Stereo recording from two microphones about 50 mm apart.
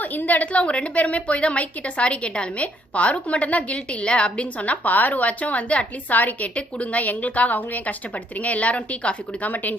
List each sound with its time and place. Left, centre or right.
0.0 s a woman's voice: left